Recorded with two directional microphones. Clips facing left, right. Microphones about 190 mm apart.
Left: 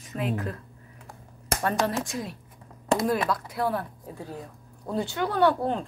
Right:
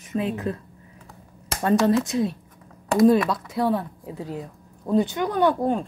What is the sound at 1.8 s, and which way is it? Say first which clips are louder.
A woman's voice: right 9 dB; 25° right (ahead or behind).